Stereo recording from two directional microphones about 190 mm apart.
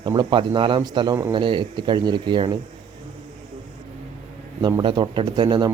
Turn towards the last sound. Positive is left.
turn(degrees=-20)  # may be behind; listen again after turning